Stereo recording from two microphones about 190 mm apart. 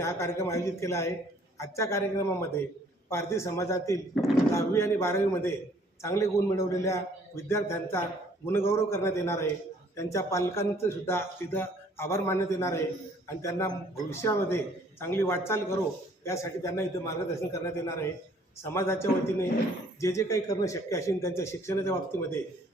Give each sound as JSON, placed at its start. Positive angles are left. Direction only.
{"t": 0.0, "sound": "a man's voice", "side_deg": 15}